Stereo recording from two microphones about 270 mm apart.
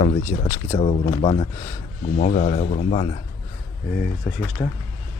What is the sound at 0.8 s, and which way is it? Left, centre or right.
Speech, left.